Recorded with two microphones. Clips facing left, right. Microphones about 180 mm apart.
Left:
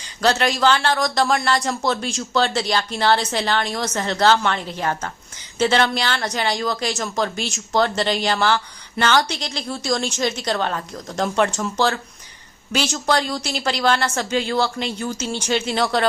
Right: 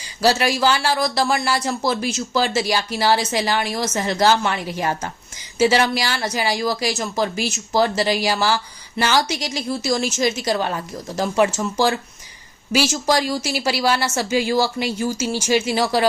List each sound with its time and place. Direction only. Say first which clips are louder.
0.2 s speech: right 1 dB; 10° right (ahead or behind)